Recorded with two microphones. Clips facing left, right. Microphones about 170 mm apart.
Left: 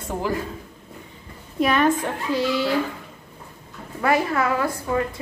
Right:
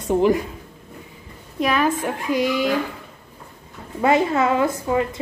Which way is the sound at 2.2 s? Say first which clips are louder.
Right 2 dB; 15° right (ahead or behind).